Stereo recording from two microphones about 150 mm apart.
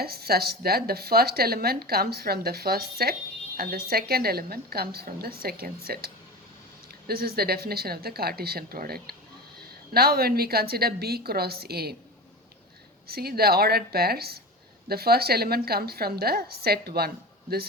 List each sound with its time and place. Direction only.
0.0 s speech: 90° right
7.1 s speech: 90° right
13.1 s speech: 90° right